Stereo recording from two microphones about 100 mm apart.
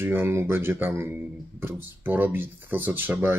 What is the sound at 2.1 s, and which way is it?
Speech, 20° right (ahead or behind).